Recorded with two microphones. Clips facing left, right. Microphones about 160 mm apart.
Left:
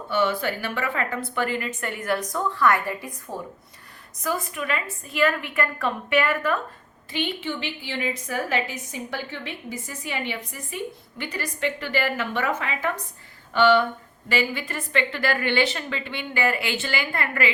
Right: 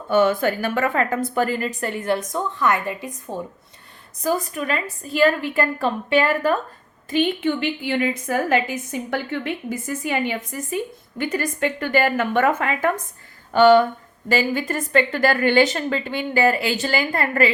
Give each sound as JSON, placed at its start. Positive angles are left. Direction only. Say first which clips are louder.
{"t": 0.1, "sound": "a woman's voice", "louder": "right 6 dB", "side_deg": -45}
{"t": 4.2, "sound": "a woman's voice", "louder": "right 5 dB", "side_deg": -35}
{"t": 7.1, "sound": "a woman's voice", "louder": "right 8 dB", "side_deg": -50}